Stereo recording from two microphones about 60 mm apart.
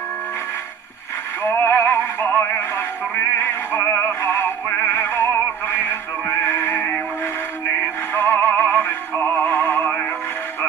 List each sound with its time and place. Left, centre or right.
1.4 s synthetic singing: left
8.1 s music: left